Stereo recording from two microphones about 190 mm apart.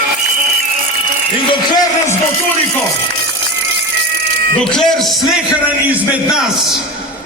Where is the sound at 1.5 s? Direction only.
20° left (ahead or behind).